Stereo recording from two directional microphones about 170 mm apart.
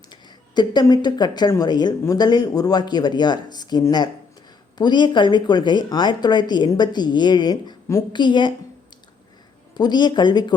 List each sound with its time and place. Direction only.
0.1 s speech: 25° left (ahead or behind)
9.7 s speech: 25° left (ahead or behind)